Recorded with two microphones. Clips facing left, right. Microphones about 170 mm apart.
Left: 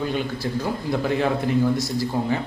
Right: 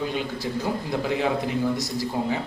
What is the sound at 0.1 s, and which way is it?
Speech, 15° right (ahead or behind).